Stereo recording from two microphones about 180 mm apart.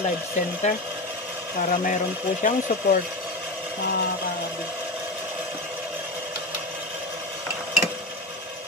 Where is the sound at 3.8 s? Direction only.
65° left (ahead or behind).